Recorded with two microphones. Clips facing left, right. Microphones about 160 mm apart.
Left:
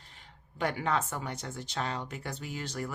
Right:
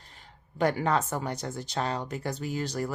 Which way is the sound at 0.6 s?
40° right (ahead or behind).